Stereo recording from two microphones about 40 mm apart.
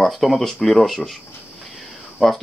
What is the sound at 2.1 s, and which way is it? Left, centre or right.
Speech, centre.